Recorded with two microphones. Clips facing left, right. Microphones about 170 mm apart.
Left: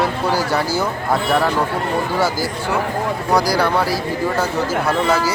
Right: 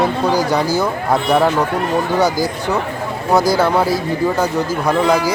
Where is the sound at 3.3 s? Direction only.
25° right (ahead or behind).